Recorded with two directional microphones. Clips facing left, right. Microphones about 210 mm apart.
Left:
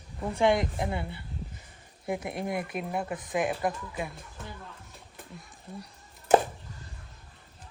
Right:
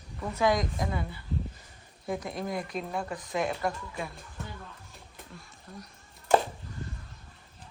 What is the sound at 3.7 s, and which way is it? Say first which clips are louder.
Speech: left 1 dB; 5° left (ahead or behind).